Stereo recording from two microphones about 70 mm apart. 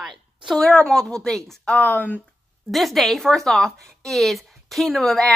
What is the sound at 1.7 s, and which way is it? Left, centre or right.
Speech, left.